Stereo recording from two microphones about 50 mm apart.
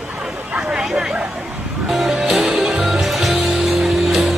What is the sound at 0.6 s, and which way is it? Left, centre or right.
Chatter, centre.